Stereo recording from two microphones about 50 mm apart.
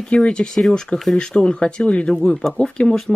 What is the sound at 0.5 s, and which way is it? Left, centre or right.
Speech, centre.